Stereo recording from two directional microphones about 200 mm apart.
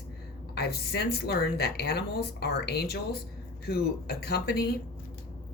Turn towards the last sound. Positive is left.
turn(degrees=50)  # may be behind; listen again after turning